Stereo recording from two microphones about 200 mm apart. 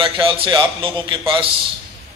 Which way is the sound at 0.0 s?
25° right (ahead or behind).